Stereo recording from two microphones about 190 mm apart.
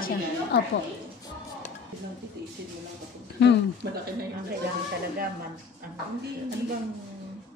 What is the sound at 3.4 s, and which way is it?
Speech, 65° left (ahead or behind).